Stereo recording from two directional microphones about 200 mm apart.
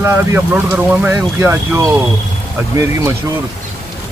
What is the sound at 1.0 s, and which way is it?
Speech, 10° right (ahead or behind).